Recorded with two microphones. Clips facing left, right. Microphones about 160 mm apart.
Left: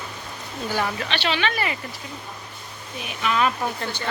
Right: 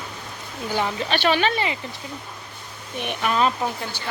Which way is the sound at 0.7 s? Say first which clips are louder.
Right 1 dB; 20° right (ahead or behind).